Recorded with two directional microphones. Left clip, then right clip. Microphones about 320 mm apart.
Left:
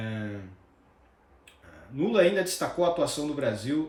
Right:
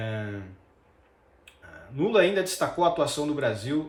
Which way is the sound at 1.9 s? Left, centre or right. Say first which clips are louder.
Right 1 dB; centre.